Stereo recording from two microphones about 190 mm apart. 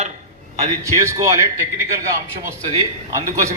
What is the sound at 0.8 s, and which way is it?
Speech, 15° right (ahead or behind).